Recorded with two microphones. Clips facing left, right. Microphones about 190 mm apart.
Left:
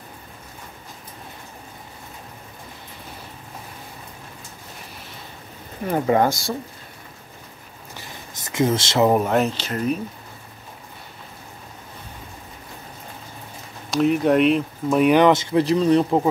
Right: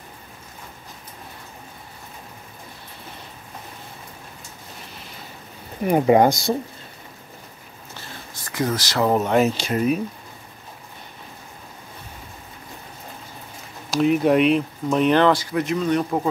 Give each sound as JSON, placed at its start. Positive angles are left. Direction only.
{"t": 5.9, "sound": "speech", "side_deg": -15}
{"t": 7.9, "sound": "a sound", "side_deg": 15}
{"t": 9.2, "sound": "speech", "side_deg": 0}
{"t": 9.6, "sound": "speech", "side_deg": -10}
{"t": 13.8, "sound": "speech", "side_deg": 0}